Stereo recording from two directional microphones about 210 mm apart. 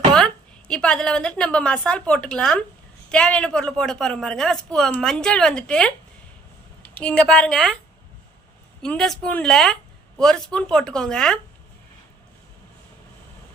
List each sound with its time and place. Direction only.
0.7 s speech: 5° left (ahead or behind)
6.9 s speech: 5° left (ahead or behind)
8.8 s speech: 5° left (ahead or behind)